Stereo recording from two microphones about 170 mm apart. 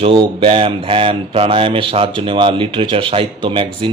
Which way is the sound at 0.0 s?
30° right (ahead or behind).